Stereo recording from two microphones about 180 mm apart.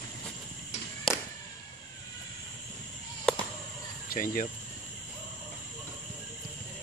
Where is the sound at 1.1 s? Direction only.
Centre (ahead or behind).